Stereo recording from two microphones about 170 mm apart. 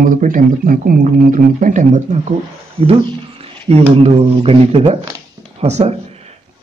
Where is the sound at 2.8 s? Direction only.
35° right (ahead or behind).